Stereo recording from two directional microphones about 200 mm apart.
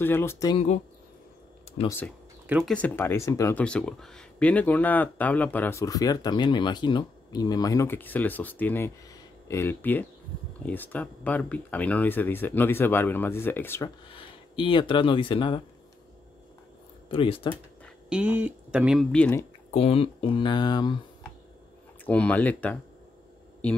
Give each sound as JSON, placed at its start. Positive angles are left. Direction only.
{"t": 0.0, "sound": "speech", "side_deg": 10}
{"t": 1.9, "sound": "speech", "side_deg": 10}
{"t": 2.4, "sound": "speech", "side_deg": -10}
{"t": 2.7, "sound": "speech", "side_deg": 10}
{"t": 14.0, "sound": "speech", "side_deg": 25}
{"t": 17.1, "sound": "speech", "side_deg": 25}
{"t": 17.8, "sound": "speech", "side_deg": -5}
{"t": 19.7, "sound": "speech", "side_deg": 30}
{"t": 22.0, "sound": "speech", "side_deg": 5}